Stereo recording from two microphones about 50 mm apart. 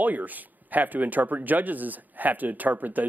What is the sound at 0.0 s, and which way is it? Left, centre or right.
Speech, right.